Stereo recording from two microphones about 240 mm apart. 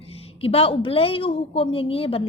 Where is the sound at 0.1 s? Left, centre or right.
Left.